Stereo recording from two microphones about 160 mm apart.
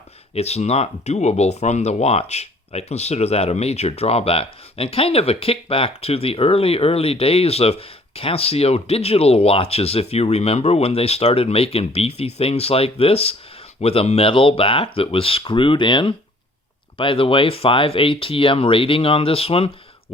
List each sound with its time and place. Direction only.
0.3 s speech: 40° left (ahead or behind)